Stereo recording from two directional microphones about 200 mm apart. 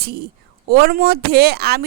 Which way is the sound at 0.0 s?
50° right (ahead or behind).